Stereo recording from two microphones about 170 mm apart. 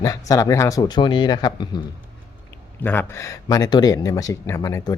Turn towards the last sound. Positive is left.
turn(degrees=20)  # may be behind; listen again after turning